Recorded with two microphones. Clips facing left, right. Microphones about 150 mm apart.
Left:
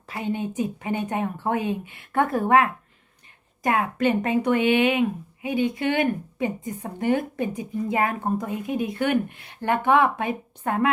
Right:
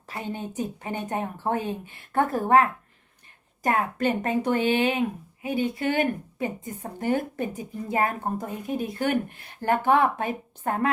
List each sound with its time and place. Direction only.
0.3 s speech: 40° right (ahead or behind)